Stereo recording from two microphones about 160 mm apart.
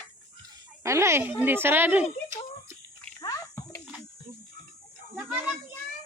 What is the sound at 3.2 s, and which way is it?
Bathtub, 20° left (ahead or behind).